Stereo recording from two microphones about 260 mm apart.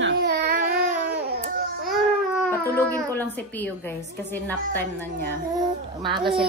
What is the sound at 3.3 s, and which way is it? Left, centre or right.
A woman's voice, centre.